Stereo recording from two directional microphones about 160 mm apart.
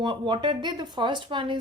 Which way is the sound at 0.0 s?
30° right (ahead or behind).